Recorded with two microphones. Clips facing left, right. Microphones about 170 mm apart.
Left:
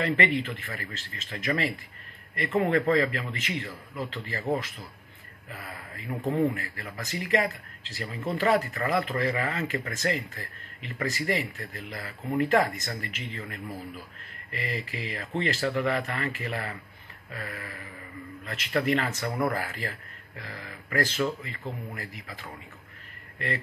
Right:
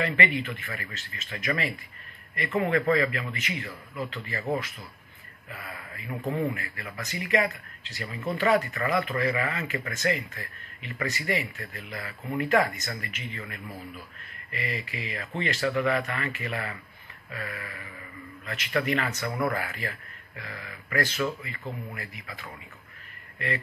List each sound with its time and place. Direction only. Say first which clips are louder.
0.0 s speech: left 1 dB; 35° left (ahead or behind)
6.0 s a man's voice: left 3 dB; centre (ahead or behind)
6.5 s speech: even; 35° left (ahead or behind)